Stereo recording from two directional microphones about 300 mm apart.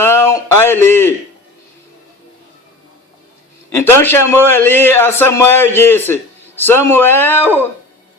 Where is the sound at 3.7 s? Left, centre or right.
Centre.